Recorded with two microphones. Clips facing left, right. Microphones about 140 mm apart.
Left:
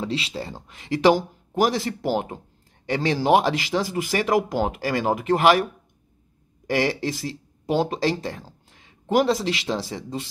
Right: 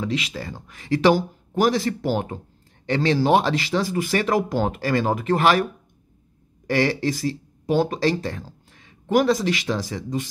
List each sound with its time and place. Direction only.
0.0 s speech: 30° left (ahead or behind)
6.7 s speech: 15° left (ahead or behind)